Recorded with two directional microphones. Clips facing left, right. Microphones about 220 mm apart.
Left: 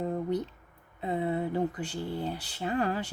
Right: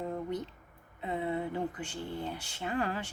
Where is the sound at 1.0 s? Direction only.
35° left (ahead or behind).